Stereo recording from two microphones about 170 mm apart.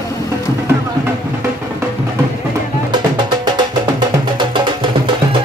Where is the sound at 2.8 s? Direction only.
25° right (ahead or behind).